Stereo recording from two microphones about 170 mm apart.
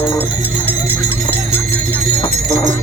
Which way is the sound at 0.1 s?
10° left (ahead or behind).